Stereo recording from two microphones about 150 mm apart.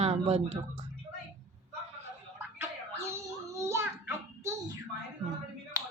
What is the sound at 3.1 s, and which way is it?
Child singing, 20° right (ahead or behind).